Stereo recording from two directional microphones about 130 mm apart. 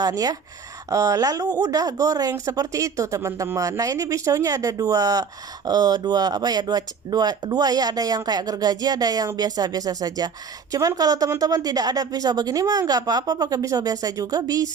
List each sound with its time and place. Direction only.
0.0 s speech: 30° right (ahead or behind)